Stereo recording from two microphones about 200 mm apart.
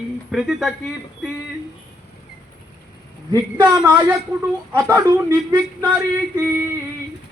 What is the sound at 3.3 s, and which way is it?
Speech, 15° right (ahead or behind).